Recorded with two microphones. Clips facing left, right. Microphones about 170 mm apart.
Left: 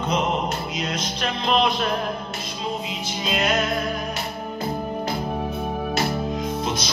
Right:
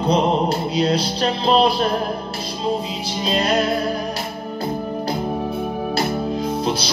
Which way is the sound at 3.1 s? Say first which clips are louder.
Right 4 dB; 35° right (ahead or behind).